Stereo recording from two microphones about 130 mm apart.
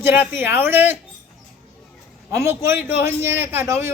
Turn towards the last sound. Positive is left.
turn(degrees=-20)  # may be behind; listen again after turning